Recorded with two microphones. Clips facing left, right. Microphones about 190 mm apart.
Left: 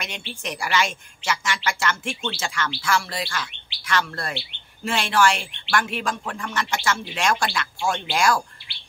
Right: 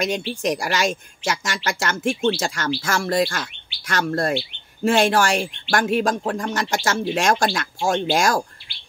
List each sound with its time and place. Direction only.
0.0 s speech: 40° right (ahead or behind)